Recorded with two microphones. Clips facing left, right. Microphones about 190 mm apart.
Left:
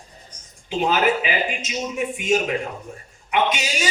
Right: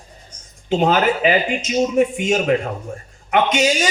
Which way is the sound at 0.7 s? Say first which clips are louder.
Right 4 dB; 50° right (ahead or behind).